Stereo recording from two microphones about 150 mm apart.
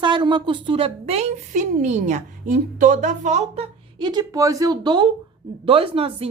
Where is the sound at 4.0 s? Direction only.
25° right (ahead or behind).